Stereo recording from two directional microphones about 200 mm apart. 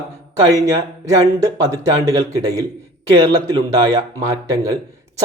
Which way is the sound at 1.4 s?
15° right (ahead or behind).